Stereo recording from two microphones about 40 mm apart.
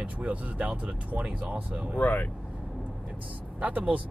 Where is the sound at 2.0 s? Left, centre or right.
Left.